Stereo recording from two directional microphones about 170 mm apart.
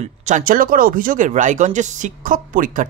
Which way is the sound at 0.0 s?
45° right (ahead or behind).